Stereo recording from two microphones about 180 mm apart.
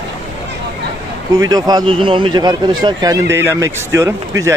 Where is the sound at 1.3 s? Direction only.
20° right (ahead or behind).